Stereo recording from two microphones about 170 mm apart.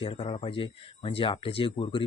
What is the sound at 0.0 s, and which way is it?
Speech, 30° left (ahead or behind).